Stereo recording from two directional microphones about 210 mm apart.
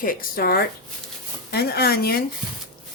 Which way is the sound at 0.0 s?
40° left (ahead or behind).